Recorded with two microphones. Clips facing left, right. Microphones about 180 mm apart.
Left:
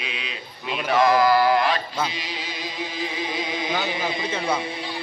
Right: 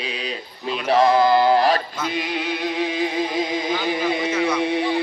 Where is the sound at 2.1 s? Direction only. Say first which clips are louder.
Right 9 dB; 55° right (ahead or behind).